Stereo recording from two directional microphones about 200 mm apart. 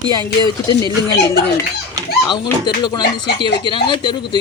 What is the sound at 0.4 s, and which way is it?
Speech, 20° left (ahead or behind).